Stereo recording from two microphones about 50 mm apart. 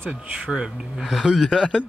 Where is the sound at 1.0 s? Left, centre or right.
Centre.